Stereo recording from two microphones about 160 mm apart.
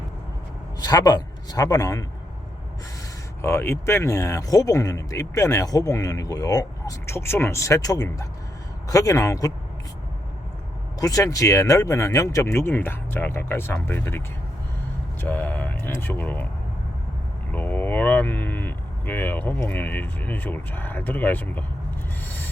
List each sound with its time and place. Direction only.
0.8 s a man's voice: 25° left (ahead or behind)
3.4 s speech: 15° left (ahead or behind)
11.0 s speech: 20° left (ahead or behind)
15.2 s speech: 10° left (ahead or behind)
17.5 s speech: 10° left (ahead or behind)